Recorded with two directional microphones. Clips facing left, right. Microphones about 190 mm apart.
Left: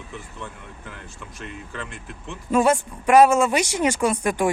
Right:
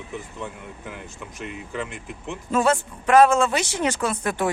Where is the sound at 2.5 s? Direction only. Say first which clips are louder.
Left 2 dB; 10° left (ahead or behind).